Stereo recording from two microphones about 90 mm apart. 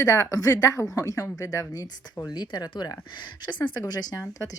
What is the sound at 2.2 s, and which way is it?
Speech, 55° left (ahead or behind).